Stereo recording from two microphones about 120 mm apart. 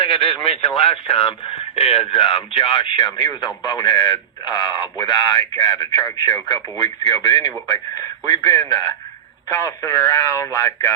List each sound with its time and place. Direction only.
0.2 s speech: centre (ahead or behind)
0.8 s speech: 50° left (ahead or behind)
2.2 s a man's voice: 40° left (ahead or behind); by 10.9 s 20° left (ahead or behind)